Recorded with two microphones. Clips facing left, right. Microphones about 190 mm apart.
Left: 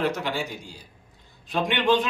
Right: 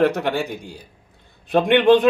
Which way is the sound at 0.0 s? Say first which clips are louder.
Right 8 dB; 60° right (ahead or behind).